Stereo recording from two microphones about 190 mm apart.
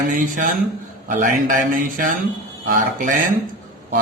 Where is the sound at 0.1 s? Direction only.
45° right (ahead or behind).